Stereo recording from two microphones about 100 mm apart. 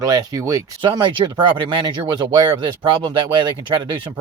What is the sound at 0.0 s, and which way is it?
Speech, 35° right (ahead or behind).